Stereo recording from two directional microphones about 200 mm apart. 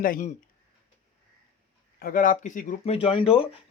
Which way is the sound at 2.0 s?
45° left (ahead or behind).